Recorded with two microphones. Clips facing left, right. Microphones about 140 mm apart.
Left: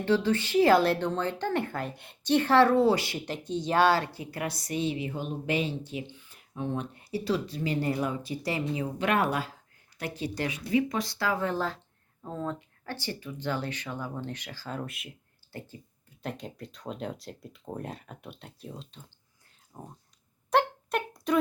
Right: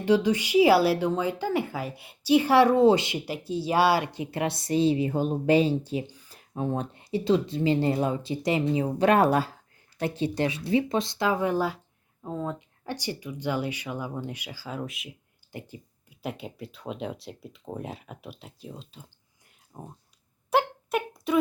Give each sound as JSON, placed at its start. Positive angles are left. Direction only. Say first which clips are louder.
{"t": 0.0, "sound": "a woman's voice", "louder": "right 3 dB", "side_deg": -15}
{"t": 3.2, "sound": "speech", "louder": "right 2 dB", "side_deg": -5}
{"t": 6.9, "sound": "speech", "louder": "right 6 dB", "side_deg": -20}
{"t": 8.8, "sound": "a woman's voice", "louder": "right 6 dB", "side_deg": -35}
{"t": 15.5, "sound": "a woman's voice", "louder": "right 2 dB", "side_deg": -15}
{"t": 20.5, "sound": "a sound", "louder": "right 1 dB", "side_deg": -5}